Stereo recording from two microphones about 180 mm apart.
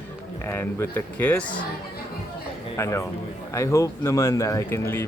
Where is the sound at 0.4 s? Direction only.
10° left (ahead or behind).